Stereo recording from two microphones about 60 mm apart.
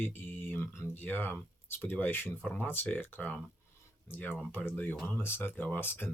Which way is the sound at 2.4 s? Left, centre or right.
Left.